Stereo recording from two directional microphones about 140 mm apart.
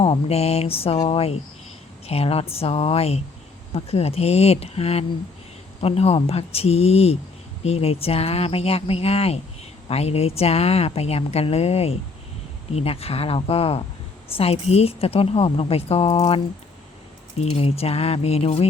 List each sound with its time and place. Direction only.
0.0 s a woman's voice: 45° left (ahead or behind)